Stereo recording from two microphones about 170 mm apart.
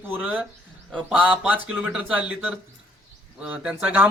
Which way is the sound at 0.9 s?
5° left (ahead or behind).